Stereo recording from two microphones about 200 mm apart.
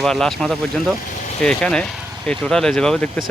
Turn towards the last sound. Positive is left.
turn(degrees=5)  # may be behind; listen again after turning